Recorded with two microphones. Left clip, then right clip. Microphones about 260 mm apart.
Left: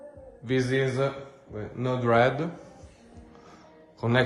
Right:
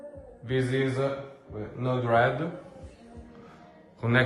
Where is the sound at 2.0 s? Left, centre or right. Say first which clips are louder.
Left 2 dB; left.